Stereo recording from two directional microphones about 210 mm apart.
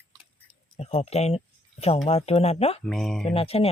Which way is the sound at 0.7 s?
30° left (ahead or behind).